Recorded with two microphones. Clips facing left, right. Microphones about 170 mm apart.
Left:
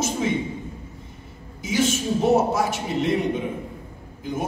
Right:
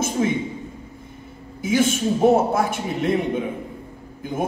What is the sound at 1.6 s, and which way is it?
Speech, 55° right (ahead or behind).